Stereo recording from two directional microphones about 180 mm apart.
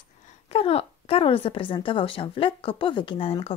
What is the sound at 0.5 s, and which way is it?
A woman's voice, 35° left (ahead or behind).